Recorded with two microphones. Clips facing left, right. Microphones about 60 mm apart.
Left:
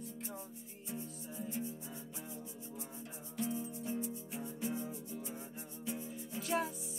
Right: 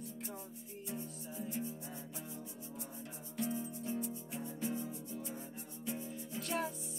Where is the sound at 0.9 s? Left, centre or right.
Centre.